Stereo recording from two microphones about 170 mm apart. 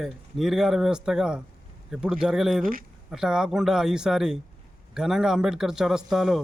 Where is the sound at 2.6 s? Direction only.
55° right (ahead or behind).